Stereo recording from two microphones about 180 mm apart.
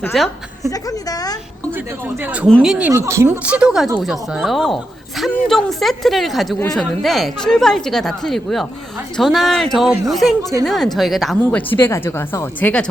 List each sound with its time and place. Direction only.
0.1 s a woman's voice: centre (ahead or behind)
0.7 s a woman's voice: 20° left (ahead or behind)
2.2 s a woman's voice: 10° right (ahead or behind)
11.7 s a woman's voice: 10° left (ahead or behind)